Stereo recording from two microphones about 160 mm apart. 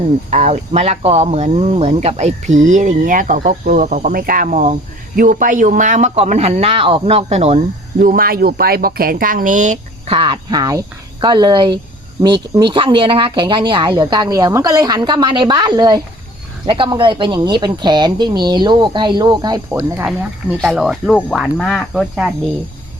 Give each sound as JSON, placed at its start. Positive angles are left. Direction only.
{"t": 0.3, "sound": "speech", "side_deg": -45}
{"t": 7.9, "sound": "speech", "side_deg": -65}
{"t": 10.1, "sound": "speech", "side_deg": -35}
{"t": 19.7, "sound": "speech", "side_deg": -10}
{"t": 20.6, "sound": "speech", "side_deg": 0}